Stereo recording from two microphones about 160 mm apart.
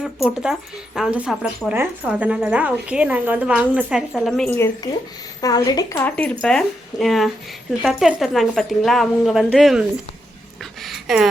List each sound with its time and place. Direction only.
0.0 s speech: 5° right (ahead or behind)
4.5 s speech: 15° left (ahead or behind); by 11.3 s centre (ahead or behind)